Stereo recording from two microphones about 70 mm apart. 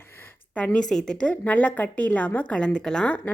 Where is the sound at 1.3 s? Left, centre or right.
Left.